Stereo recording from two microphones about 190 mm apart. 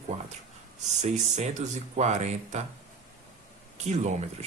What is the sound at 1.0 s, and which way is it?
Speech, 35° right (ahead or behind).